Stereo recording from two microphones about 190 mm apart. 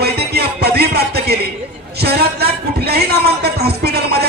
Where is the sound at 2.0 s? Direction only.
55° right (ahead or behind).